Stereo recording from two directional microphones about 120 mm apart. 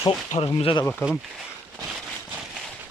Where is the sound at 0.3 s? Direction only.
60° left (ahead or behind).